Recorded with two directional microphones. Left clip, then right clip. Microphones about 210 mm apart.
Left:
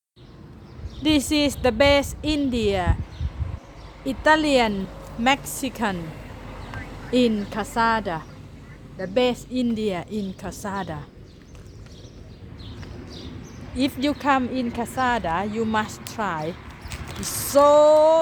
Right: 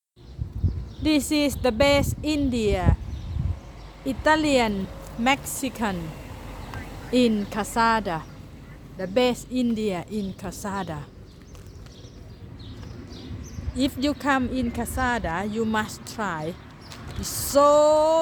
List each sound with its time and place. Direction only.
1.0 s a woman's voice: 5° right (ahead or behind)
4.0 s a woman's voice: 5° right (ahead or behind)
6.0 s vehicle: 55° right (ahead or behind)
6.7 s a sound: 60° right (ahead or behind)
7.1 s a woman's voice: 10° right (ahead or behind)
13.7 s a woman's voice: centre (ahead or behind)